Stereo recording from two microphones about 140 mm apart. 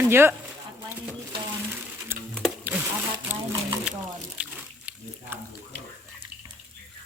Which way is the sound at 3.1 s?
30° right (ahead or behind).